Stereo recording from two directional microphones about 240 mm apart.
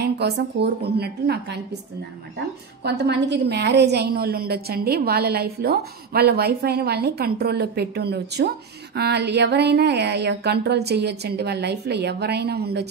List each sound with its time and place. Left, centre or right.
0.0 s speech: right
2.8 s a woman's voice: right